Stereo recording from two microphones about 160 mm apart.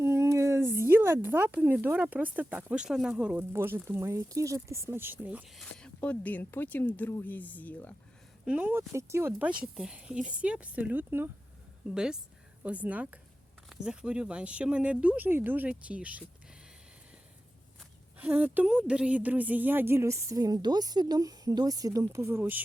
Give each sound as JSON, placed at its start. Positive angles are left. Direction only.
{"t": 0.0, "sound": "speech", "side_deg": -15}
{"t": 8.4, "sound": "speech", "side_deg": -10}
{"t": 18.2, "sound": "speech", "side_deg": -10}